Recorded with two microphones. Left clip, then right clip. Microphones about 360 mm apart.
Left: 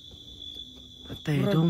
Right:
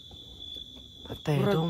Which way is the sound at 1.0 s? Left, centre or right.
Centre.